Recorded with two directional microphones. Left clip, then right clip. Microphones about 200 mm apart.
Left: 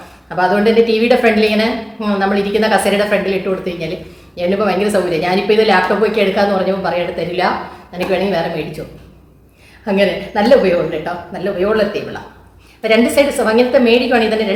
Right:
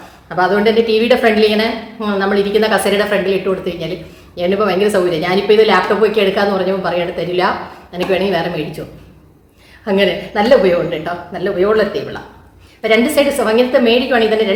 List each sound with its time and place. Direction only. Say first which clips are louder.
0.3 s a woman's voice: even; 15° right (ahead or behind)
9.8 s a woman's voice: even; 15° right (ahead or behind)